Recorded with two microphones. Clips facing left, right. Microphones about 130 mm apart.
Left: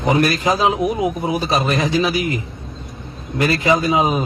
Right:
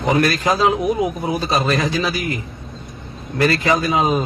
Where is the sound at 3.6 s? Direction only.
20° left (ahead or behind).